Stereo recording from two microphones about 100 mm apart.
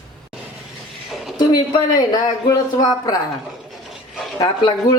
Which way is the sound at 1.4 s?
40° left (ahead or behind).